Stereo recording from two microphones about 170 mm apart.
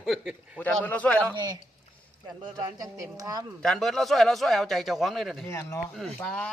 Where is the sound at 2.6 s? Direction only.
20° right (ahead or behind).